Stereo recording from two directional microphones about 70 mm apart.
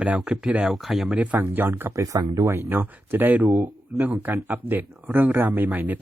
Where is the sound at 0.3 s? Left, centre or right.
Centre.